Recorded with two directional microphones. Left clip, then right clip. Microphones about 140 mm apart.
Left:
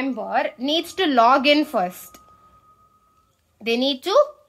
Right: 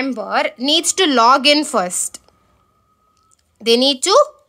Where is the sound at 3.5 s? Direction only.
35° right (ahead or behind).